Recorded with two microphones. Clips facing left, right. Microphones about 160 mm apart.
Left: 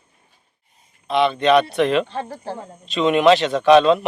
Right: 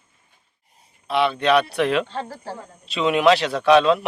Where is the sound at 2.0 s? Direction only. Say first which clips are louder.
Left 2 dB; 15° left (ahead or behind).